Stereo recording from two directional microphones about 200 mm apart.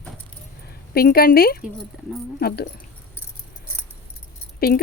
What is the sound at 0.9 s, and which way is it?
Speech, 50° left (ahead or behind).